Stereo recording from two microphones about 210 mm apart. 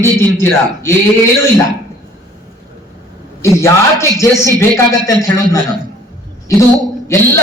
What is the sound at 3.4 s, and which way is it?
A man's voice, 15° left (ahead or behind).